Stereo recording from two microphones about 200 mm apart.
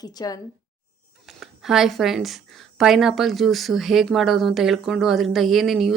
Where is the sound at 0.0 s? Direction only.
20° left (ahead or behind).